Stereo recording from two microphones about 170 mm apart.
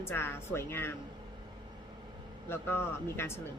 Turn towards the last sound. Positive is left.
turn(degrees=15)  # may be behind; listen again after turning